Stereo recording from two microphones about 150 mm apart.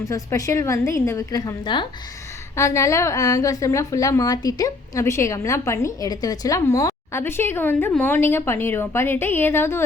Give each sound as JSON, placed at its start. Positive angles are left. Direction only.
{"t": 0.0, "sound": "a woman's voice", "side_deg": 20}
{"t": 2.6, "sound": "a woman's voice", "side_deg": 20}